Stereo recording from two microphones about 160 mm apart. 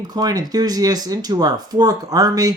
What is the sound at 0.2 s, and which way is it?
Speech, 25° right (ahead or behind).